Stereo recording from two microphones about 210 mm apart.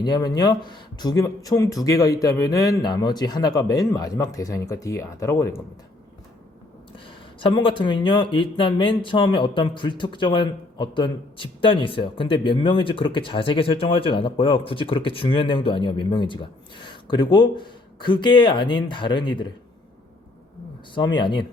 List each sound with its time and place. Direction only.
0.0 s speech: 20° left (ahead or behind)
7.3 s speech: 25° left (ahead or behind)
20.9 s speech: 20° left (ahead or behind)